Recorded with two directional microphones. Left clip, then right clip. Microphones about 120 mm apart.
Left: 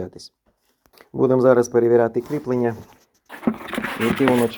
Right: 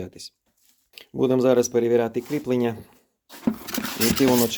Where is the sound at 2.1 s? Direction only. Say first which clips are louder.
Left 2 dB; 35° right (ahead or behind).